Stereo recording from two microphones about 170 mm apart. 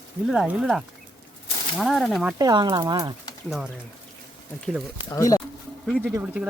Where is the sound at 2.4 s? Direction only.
20° right (ahead or behind).